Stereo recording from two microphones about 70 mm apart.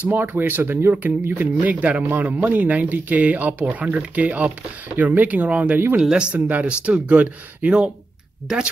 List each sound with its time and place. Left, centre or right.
0.1 s speech: right; by 8.6 s centre